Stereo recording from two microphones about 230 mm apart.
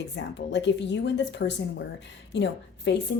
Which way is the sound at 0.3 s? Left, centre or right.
Left.